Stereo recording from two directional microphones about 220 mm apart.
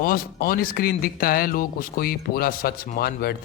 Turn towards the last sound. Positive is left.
turn(degrees=45)  # may be behind; listen again after turning